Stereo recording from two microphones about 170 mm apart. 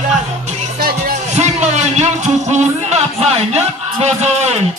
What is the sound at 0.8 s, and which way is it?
Music, 60° right (ahead or behind).